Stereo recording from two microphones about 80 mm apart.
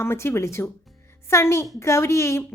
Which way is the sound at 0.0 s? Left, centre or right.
Left.